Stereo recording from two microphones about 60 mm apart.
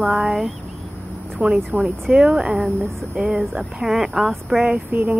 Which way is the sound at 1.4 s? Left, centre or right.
Right.